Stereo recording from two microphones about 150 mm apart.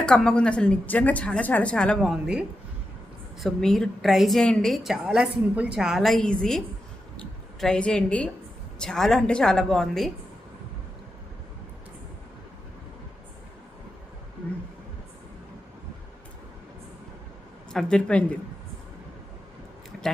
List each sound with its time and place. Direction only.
0.0 s a woman's voice: 5° left (ahead or behind)
3.4 s a woman's voice: 5° left (ahead or behind)
17.7 s speech: 5° left (ahead or behind)